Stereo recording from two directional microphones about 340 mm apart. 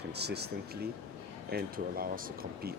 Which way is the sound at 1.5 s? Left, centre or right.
Right.